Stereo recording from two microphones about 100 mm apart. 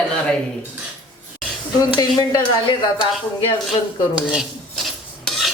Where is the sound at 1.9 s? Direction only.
45° left (ahead or behind).